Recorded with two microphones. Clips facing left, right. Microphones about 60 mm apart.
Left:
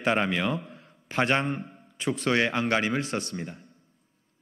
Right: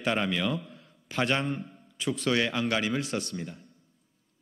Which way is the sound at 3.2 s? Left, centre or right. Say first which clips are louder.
Left 1 dB; left.